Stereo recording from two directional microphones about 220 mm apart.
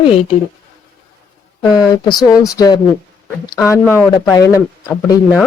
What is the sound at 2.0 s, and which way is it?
Speech, 20° left (ahead or behind).